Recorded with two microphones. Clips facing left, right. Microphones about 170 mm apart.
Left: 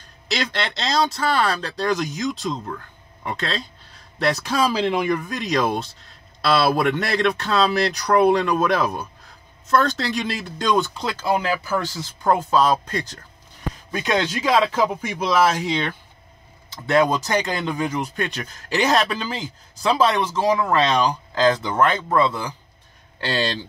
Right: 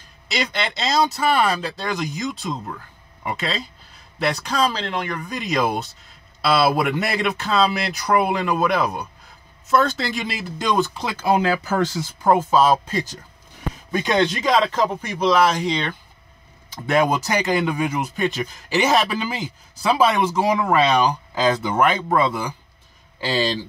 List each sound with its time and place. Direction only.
0.3 s speech: centre (ahead or behind)
11.2 s speech: 20° right (ahead or behind)
12.2 s speech: 5° right (ahead or behind)
16.8 s speech: 10° right (ahead or behind)